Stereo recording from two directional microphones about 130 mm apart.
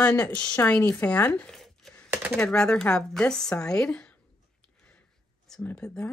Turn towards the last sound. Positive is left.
turn(degrees=10)  # may be behind; listen again after turning